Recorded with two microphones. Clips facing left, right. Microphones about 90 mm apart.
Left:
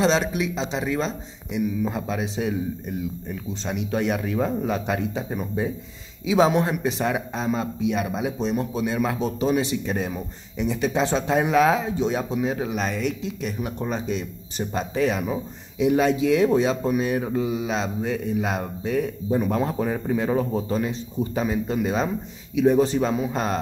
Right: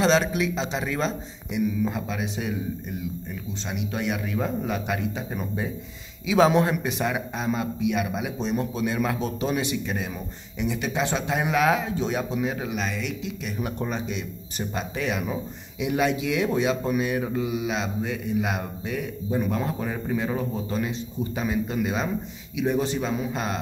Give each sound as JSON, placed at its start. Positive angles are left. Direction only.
{"t": 0.0, "sound": "speech", "side_deg": 25}
{"t": 1.9, "sound": "speech", "side_deg": 30}
{"t": 6.2, "sound": "speech", "side_deg": 25}
{"t": 13.7, "sound": "speech", "side_deg": 20}
{"t": 13.9, "sound": "speech", "side_deg": 35}